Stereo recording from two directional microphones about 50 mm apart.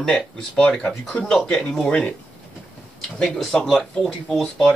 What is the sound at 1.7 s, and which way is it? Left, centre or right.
Speech, left.